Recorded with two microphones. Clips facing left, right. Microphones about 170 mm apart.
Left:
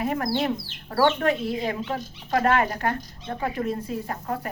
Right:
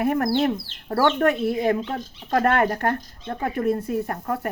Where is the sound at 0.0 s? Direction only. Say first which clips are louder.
Right 4 dB; 50° right (ahead or behind).